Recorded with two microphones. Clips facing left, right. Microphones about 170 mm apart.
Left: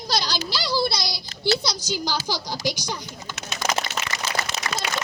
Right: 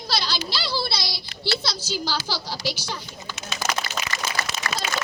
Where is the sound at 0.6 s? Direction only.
15° left (ahead or behind).